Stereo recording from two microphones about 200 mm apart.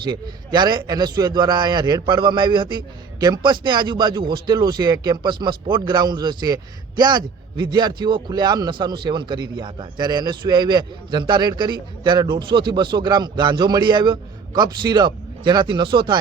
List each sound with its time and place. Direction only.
0.0 s a man's voice: 20° right (ahead or behind)